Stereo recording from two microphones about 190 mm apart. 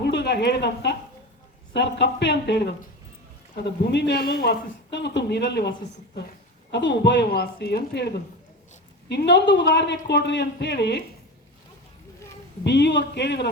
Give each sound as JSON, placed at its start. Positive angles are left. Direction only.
{"t": 0.0, "sound": "speech", "side_deg": 65}
{"t": 12.6, "sound": "speech", "side_deg": 65}